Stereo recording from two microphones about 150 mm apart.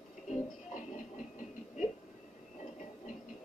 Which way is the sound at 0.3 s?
60° left (ahead or behind).